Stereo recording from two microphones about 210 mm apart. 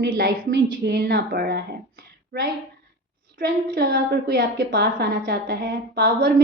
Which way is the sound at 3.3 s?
40° right (ahead or behind).